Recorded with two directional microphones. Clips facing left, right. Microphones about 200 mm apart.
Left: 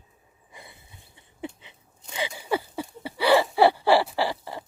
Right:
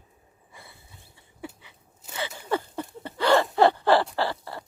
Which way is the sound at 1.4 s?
20° left (ahead or behind).